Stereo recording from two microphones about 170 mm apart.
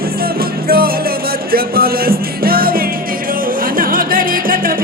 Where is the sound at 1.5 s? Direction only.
60° right (ahead or behind).